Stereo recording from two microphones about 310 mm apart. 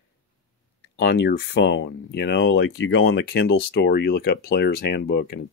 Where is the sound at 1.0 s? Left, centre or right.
Left.